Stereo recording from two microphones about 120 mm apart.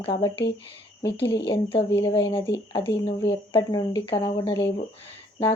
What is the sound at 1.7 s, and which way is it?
Speech, 45° left (ahead or behind).